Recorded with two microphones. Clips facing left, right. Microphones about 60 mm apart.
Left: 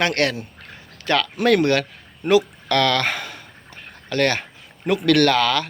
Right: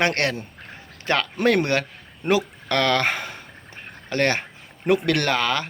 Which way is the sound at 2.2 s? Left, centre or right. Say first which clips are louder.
Left 4 dB; right.